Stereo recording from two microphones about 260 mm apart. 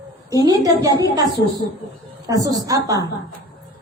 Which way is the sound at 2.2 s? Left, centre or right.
Centre.